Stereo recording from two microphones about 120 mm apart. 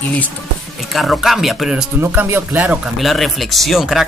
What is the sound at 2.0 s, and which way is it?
Speech, 15° right (ahead or behind).